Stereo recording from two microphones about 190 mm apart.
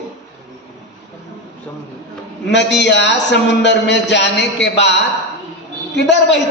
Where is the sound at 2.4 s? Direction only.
65° left (ahead or behind).